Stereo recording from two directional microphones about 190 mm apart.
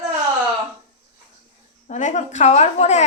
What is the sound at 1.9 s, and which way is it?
A woman's voice, 40° left (ahead or behind).